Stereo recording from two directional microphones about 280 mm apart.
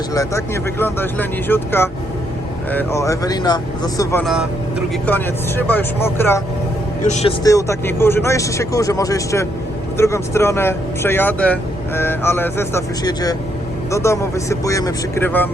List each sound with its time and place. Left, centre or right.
0.1 s speech: centre
7.0 s speech: left
7.4 s speech: centre